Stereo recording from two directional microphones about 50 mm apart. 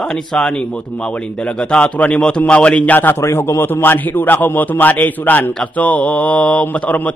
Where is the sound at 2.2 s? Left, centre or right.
Centre.